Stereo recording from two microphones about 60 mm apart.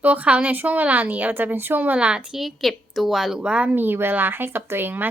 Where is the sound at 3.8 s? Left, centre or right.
Right.